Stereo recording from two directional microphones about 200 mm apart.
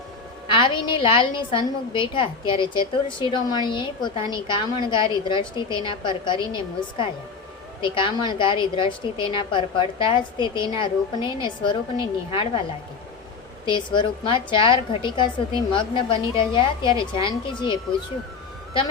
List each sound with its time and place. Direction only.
0.5 s a woman's voice: 25° left (ahead or behind)
13.7 s a woman's voice: 25° left (ahead or behind)